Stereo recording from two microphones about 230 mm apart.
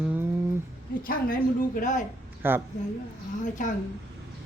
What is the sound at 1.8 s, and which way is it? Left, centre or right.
Speech, left.